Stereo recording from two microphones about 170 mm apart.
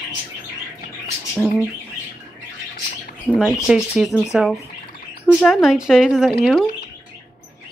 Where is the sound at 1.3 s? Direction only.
Centre (ahead or behind).